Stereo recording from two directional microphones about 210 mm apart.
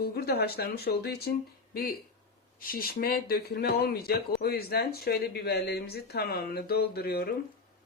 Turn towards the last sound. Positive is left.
turn(degrees=50)  # may be behind; listen again after turning